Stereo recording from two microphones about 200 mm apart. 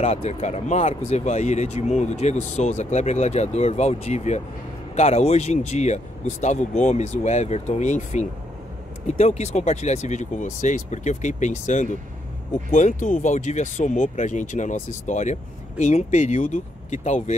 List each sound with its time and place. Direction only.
0.0 s speech: 30° left (ahead or behind)